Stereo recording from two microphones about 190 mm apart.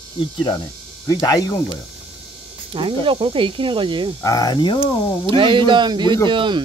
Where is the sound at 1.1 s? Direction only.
20° left (ahead or behind).